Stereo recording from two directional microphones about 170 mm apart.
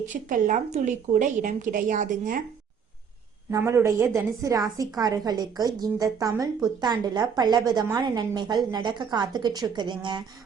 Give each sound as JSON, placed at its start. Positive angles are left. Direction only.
{"t": 0.0, "sound": "speech", "side_deg": -50}
{"t": 3.5, "sound": "a woman's voice", "side_deg": -15}